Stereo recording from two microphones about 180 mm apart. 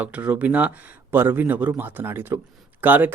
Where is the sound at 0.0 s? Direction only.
10° right (ahead or behind).